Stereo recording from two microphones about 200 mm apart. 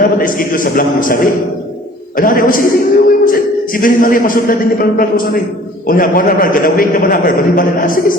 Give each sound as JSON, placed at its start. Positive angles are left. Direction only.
{"t": 0.0, "sound": "a man's voice", "side_deg": 45}